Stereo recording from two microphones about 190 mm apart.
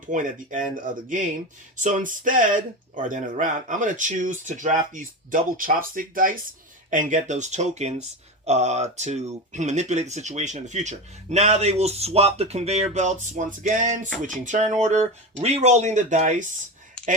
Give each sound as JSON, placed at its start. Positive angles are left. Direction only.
{"t": 0.0, "sound": "speech", "side_deg": -45}